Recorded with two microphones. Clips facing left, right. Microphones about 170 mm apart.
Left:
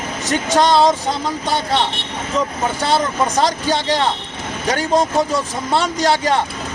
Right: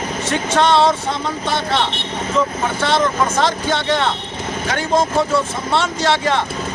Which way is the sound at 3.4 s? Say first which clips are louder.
Left 1 dB; 35° left (ahead or behind).